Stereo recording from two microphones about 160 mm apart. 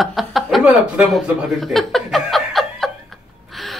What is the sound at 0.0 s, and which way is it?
Chuckle, centre (ahead or behind).